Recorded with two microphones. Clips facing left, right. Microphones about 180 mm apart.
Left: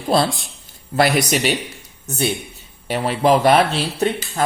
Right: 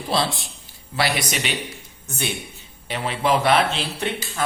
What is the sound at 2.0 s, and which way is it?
Speech, 40° left (ahead or behind).